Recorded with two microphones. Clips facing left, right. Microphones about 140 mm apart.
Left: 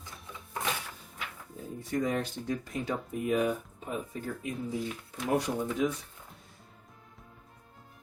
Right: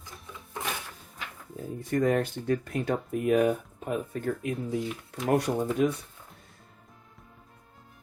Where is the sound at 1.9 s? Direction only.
55° right (ahead or behind).